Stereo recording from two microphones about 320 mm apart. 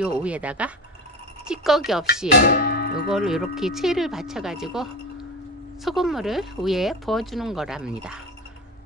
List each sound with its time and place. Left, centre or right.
0.0 s speech: centre
2.4 s music: left
3.1 s speech: centre